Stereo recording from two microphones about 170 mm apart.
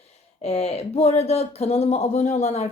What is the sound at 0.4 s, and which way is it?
Speech, 40° left (ahead or behind).